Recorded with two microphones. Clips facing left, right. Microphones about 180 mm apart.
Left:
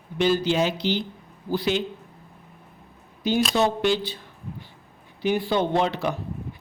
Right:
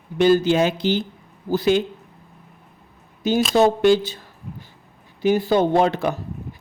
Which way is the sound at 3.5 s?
45° right (ahead or behind).